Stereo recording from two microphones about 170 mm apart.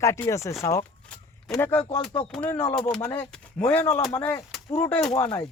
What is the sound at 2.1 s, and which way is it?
Speech, 30° left (ahead or behind).